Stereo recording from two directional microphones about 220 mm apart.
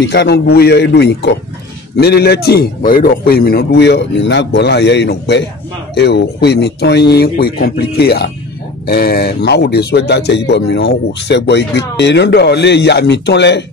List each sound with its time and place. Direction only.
0.0 s speech: 50° left (ahead or behind)